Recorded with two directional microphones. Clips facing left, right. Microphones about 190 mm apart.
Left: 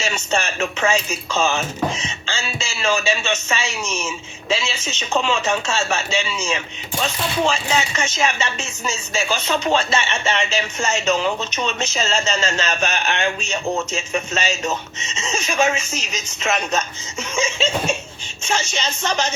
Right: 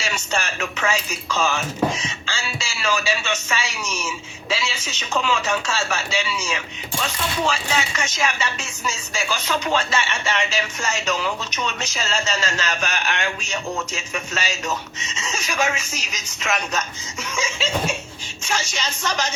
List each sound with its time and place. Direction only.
0.0 s chopping: 25° left (ahead or behind)